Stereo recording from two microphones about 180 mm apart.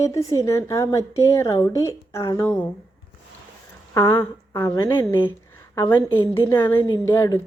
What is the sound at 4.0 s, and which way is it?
A woman's voice, 15° left (ahead or behind).